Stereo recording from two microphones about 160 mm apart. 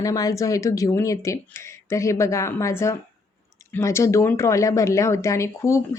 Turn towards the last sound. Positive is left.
turn(degrees=20)  # may be behind; listen again after turning